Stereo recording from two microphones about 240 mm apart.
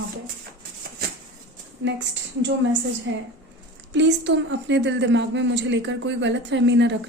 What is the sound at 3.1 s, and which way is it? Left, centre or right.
Speech, right.